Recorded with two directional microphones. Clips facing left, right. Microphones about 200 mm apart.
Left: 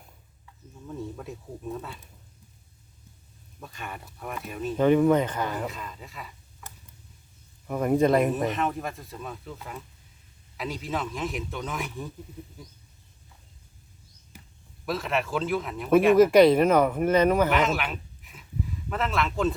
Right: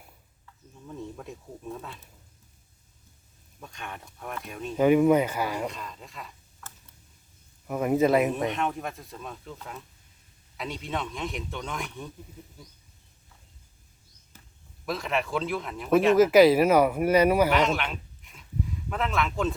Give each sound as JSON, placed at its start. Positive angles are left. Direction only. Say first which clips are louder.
{"t": 0.4, "sound": "speech", "louder": "left 3 dB", "side_deg": 0}
{"t": 3.6, "sound": "speech", "louder": "left 1 dB", "side_deg": 0}
{"t": 4.8, "sound": "speech", "louder": "right 1 dB", "side_deg": -10}
{"t": 5.6, "sound": "speech", "louder": "even", "side_deg": 5}
{"t": 6.6, "sound": "tick", "louder": "left 1 dB", "side_deg": 15}
{"t": 7.7, "sound": "speech", "louder": "left 1 dB", "side_deg": -5}
{"t": 14.3, "sound": "a sound", "louder": "left 5 dB", "side_deg": 10}
{"t": 14.8, "sound": "speech", "louder": "left 1 dB", "side_deg": 0}
{"t": 17.5, "sound": "a sound", "louder": "even", "side_deg": 0}
{"t": 18.9, "sound": "speech", "louder": "left 1 dB", "side_deg": 0}